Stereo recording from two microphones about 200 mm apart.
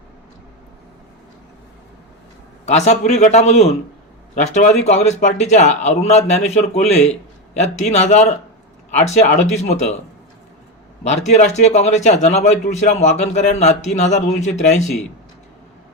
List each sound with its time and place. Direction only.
2.6 s a man's voice: 35° left (ahead or behind)
11.0 s a man's voice: 35° left (ahead or behind)